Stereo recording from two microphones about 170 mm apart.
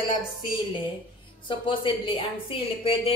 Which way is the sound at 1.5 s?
30° left (ahead or behind).